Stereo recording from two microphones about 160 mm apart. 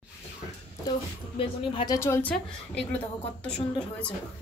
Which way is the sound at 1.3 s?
35° left (ahead or behind).